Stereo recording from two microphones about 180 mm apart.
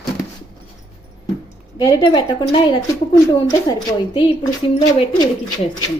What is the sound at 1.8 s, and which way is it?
Speech, 20° left (ahead or behind).